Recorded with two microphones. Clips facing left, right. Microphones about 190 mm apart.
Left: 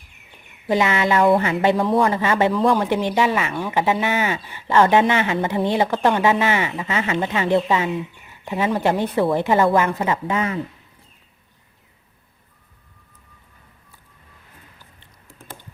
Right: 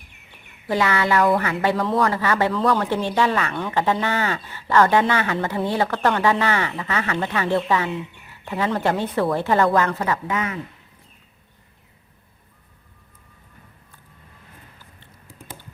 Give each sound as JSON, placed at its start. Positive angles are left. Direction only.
{"t": 0.7, "sound": "a woman's voice", "side_deg": 20}